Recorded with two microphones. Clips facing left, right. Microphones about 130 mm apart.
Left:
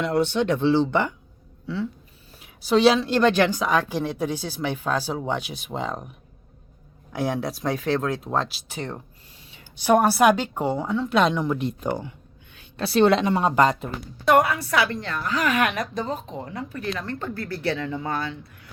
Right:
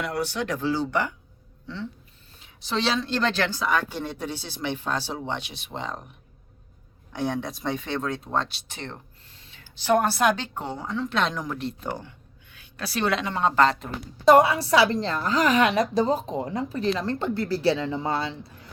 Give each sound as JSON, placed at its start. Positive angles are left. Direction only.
{"t": 0.0, "sound": "speech", "side_deg": 25}
{"t": 1.6, "sound": "a woman's voice", "side_deg": 5}
{"t": 7.1, "sound": "a woman's voice", "side_deg": 5}
{"t": 12.5, "sound": "a woman's voice", "side_deg": 25}
{"t": 13.3, "sound": "a woman's voice", "side_deg": 15}
{"t": 14.3, "sound": "speech", "side_deg": -30}